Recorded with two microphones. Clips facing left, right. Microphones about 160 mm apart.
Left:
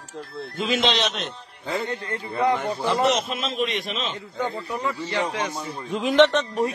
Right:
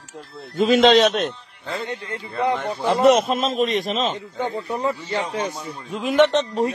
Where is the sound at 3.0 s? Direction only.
55° right (ahead or behind).